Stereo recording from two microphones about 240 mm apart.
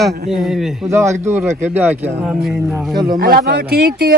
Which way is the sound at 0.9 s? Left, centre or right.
Centre.